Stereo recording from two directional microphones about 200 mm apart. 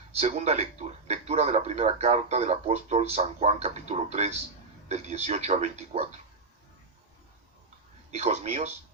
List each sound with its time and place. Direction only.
0.2 s a man's voice: 35° right (ahead or behind)
8.1 s a man's voice: 30° right (ahead or behind)